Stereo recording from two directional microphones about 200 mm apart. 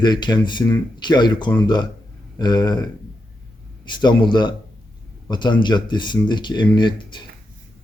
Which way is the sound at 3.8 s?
20° left (ahead or behind).